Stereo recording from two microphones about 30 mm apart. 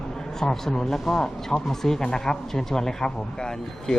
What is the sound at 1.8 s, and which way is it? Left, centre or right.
A man's voice, centre.